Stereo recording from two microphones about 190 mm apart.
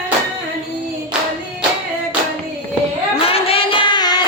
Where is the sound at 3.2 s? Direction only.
30° left (ahead or behind).